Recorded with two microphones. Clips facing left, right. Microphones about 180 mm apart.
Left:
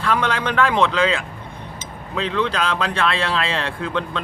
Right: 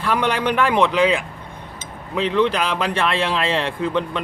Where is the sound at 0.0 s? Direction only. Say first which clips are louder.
Right 1 dB; 15° right (ahead or behind).